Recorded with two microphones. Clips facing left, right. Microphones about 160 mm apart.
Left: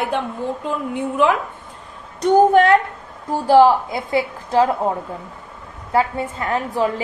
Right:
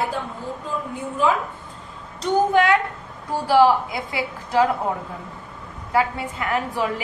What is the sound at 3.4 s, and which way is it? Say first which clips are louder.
Speech: left 4 dB; 20° left (ahead or behind).